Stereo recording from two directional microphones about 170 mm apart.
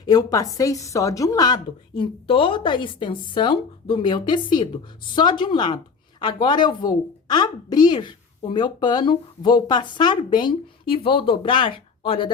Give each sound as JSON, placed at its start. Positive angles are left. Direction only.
{"t": 0.0, "sound": "a woman's voice", "side_deg": 20}